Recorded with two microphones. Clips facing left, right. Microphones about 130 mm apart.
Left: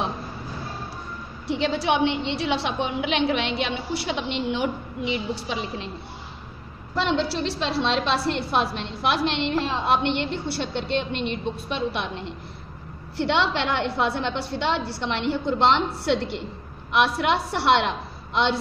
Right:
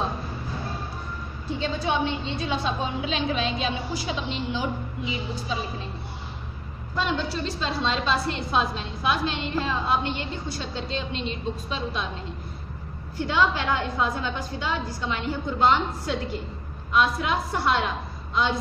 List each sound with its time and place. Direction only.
1.5 s a woman's voice: 80° left
7.0 s a woman's voice: 75° left (ahead or behind)
13.2 s a woman's voice: 80° left